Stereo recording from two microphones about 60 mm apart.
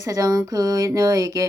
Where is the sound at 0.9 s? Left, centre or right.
Right.